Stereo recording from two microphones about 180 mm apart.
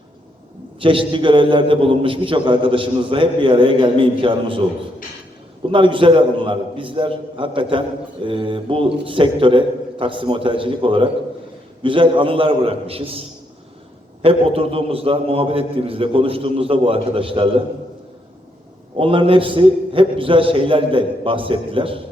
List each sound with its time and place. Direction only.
0.8 s a man's voice: 30° right (ahead or behind)
5.7 s a man's voice: 30° right (ahead or behind)
18.9 s a man's voice: 30° right (ahead or behind)